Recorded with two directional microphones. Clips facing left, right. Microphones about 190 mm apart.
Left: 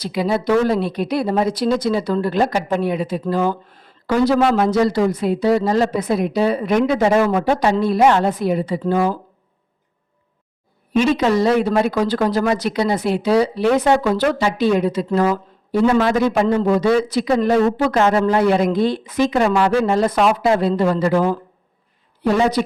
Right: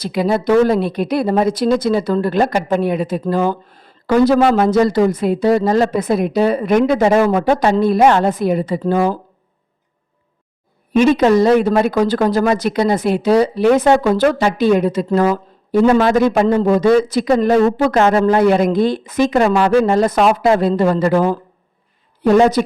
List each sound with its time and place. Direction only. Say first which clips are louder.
0.0 s speech: right 3 dB; 50° right (ahead or behind)
10.9 s speech: right 5 dB; 50° right (ahead or behind)